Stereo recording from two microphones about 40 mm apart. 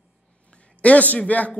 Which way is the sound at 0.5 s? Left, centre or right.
Left.